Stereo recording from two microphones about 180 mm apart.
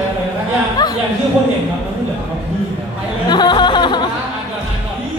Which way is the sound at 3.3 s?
25° left (ahead or behind).